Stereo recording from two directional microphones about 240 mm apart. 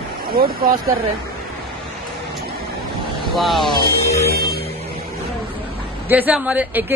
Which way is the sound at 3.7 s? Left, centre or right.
Centre.